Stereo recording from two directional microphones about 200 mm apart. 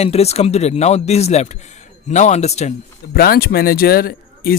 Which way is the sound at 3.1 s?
50° left (ahead or behind).